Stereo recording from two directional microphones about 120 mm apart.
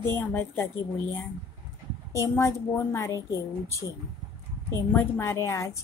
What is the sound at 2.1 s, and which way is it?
A woman's voice, 25° left (ahead or behind).